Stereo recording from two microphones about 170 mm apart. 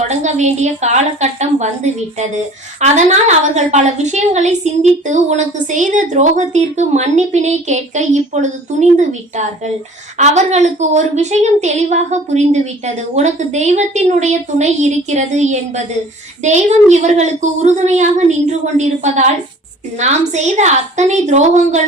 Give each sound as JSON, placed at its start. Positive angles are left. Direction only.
{"t": 0.1, "sound": "a woman's voice", "side_deg": -45}